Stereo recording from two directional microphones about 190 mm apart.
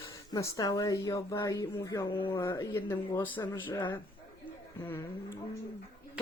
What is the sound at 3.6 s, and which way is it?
Speech, 25° left (ahead or behind).